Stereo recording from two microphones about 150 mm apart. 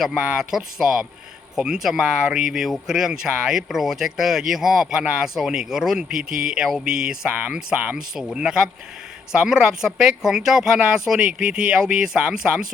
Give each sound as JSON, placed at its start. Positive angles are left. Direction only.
{"t": 0.0, "sound": "speech", "side_deg": -5}